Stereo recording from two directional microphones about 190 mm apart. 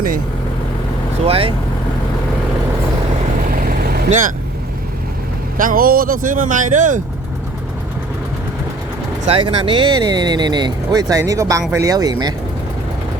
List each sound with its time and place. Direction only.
1.2 s speech: 30° right (ahead or behind)
3.4 s vehicle: 50° right (ahead or behind)
5.5 s speech: 50° right (ahead or behind)
9.2 s speech: 30° right (ahead or behind)